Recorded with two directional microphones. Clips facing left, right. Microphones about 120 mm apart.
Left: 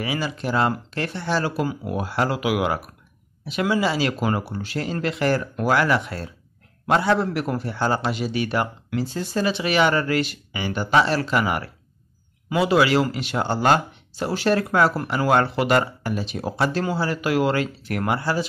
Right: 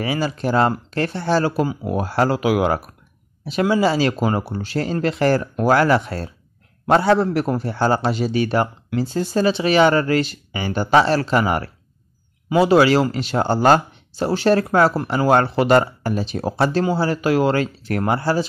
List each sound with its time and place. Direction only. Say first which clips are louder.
0.0 s a man's voice: right 4 dB; 35° right (ahead or behind)